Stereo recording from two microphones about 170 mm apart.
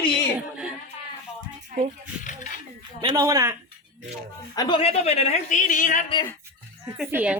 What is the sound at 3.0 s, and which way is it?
Speech, 25° right (ahead or behind).